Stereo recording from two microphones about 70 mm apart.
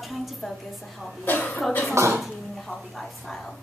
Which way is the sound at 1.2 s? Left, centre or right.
Left.